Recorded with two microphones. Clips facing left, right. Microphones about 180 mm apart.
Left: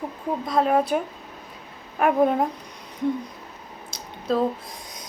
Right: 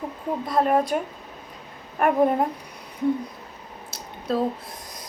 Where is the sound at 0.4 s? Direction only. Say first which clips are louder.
Even; centre (ahead or behind).